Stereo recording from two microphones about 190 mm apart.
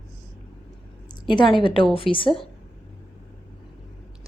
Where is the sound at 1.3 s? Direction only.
25° left (ahead or behind).